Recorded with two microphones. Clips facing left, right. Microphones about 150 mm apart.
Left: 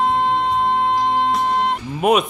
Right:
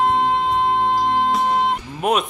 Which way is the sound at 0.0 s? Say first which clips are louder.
Even; centre (ahead or behind).